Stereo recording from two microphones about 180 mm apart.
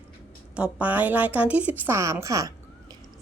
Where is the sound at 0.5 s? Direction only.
5° right (ahead or behind).